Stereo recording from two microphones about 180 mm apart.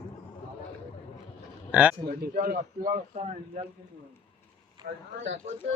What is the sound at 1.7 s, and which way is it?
Speech, 10° right (ahead or behind).